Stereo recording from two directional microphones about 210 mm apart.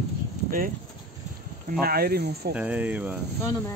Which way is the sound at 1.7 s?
45° right (ahead or behind).